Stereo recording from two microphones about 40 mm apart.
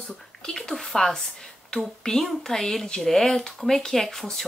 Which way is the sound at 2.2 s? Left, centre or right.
Centre.